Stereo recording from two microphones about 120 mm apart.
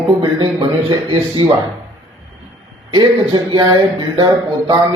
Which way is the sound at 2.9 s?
35° right (ahead or behind).